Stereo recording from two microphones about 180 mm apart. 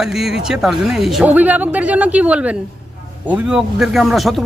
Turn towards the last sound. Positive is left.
turn(degrees=0)  # may be behind; listen again after turning